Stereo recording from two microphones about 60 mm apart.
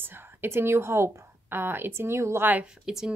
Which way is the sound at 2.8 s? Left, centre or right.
Centre.